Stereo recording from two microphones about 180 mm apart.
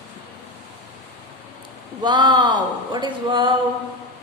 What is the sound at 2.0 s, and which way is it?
Speech, 25° right (ahead or behind).